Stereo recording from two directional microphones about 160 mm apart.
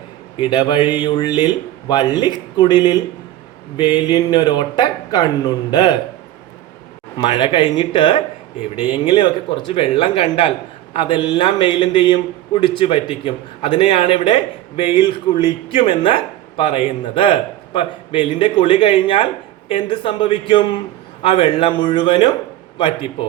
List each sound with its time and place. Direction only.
0.3 s speech: 30° left (ahead or behind)
7.2 s a man's voice: 30° left (ahead or behind)